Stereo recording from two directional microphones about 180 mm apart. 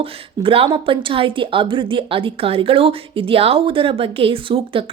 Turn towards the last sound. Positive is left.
turn(degrees=-30)  # may be behind; listen again after turning